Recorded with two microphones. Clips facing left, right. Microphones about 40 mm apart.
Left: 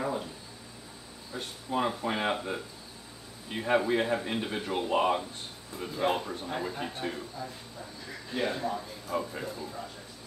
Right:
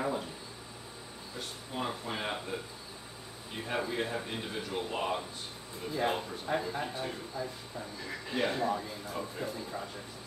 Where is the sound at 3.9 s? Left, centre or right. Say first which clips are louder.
Left 6 dB; left.